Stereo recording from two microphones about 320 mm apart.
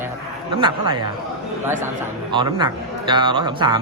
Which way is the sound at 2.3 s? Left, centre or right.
Centre.